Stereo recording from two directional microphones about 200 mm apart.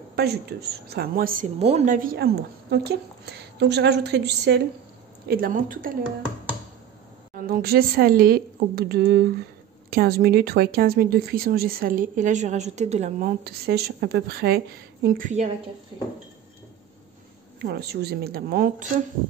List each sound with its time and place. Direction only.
0.1 s speech: 55° right (ahead or behind)
1.6 s a woman's voice: 30° right (ahead or behind); by 4.6 s 55° right (ahead or behind)
5.3 s speech: 45° right (ahead or behind)
7.4 s speech: 50° right (ahead or behind)
13.2 s speech: 50° right (ahead or behind)
15.0 s a woman's voice: 40° right (ahead or behind)
17.6 s speech: 50° right (ahead or behind)